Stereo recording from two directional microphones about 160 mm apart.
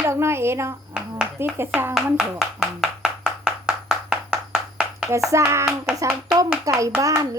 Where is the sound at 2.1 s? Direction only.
5° right (ahead or behind).